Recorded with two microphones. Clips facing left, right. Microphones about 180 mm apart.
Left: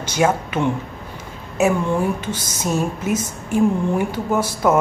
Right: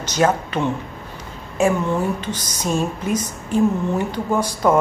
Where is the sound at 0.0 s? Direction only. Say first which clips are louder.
Even; 10° left (ahead or behind).